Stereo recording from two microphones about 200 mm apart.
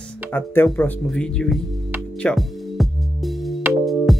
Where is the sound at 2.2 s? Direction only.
Centre (ahead or behind).